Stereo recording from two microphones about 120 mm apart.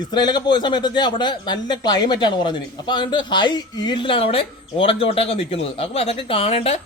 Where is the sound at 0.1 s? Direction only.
35° left (ahead or behind).